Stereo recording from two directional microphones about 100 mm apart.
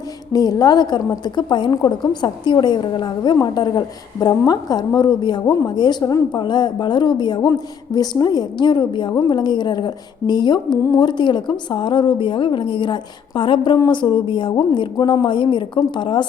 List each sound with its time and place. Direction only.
0.3 s a woman's voice: 40° left (ahead or behind)